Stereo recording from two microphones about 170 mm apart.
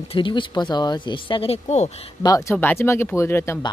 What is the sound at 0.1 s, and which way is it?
Speech, 30° left (ahead or behind).